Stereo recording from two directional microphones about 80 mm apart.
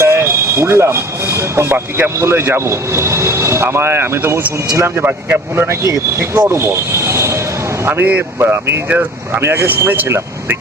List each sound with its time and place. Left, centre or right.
0.0 s speech: right
5.6 s speech: right
7.9 s speech: right
8.9 s speech: centre